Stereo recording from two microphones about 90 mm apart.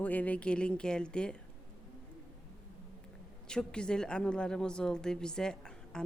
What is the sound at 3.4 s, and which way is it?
A woman's voice, 10° left (ahead or behind).